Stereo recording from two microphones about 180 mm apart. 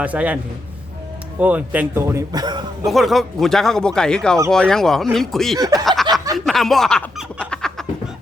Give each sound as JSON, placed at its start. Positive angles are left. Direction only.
{"t": 0.0, "sound": "speech", "side_deg": -10}
{"t": 1.4, "sound": "speech", "side_deg": -10}
{"t": 2.8, "sound": "speech", "side_deg": 0}
{"t": 5.5, "sound": "speech", "side_deg": -20}
{"t": 6.3, "sound": "snicker", "side_deg": 0}